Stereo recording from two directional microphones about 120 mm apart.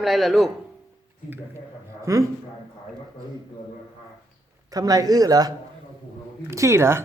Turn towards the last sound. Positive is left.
turn(degrees=-20)  # may be behind; listen again after turning